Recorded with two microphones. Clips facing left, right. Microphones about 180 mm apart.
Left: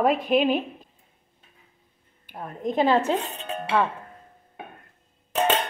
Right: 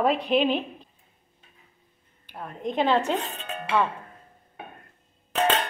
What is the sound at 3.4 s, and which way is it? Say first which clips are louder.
Music: left 3 dB; 35° left (ahead or behind).